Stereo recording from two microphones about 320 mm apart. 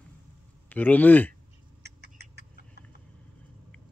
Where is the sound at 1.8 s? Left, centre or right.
Right.